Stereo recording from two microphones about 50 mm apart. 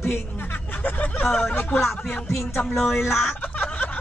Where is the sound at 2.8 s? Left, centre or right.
Centre.